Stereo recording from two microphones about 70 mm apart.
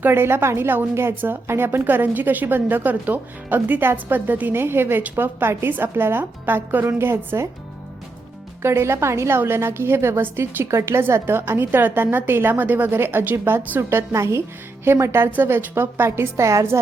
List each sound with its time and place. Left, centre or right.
0.0 s a woman's voice: right
8.6 s a woman's voice: right
13.9 s a woman's voice: right